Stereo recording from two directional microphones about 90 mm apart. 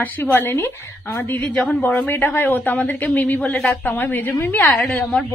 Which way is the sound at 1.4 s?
10° left (ahead or behind).